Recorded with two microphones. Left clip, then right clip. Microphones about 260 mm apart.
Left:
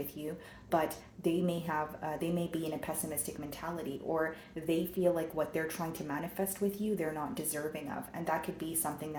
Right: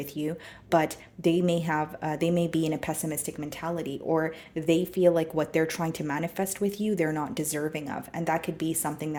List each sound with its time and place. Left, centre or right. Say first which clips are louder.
0.2 s speech: right 9 dB; right